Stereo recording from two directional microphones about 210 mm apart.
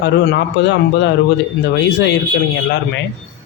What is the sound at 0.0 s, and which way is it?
A man's voice, 55° left (ahead or behind).